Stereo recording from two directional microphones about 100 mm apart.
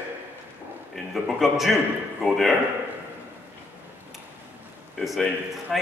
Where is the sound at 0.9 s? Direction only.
Centre (ahead or behind).